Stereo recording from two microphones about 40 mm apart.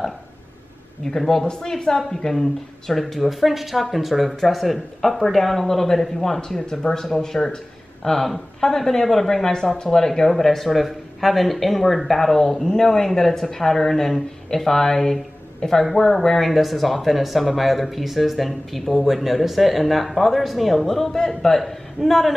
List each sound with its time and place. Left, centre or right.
1.0 s speech: centre